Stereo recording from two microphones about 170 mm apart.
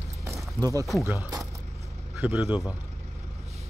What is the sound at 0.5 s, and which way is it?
Speech, 20° right (ahead or behind).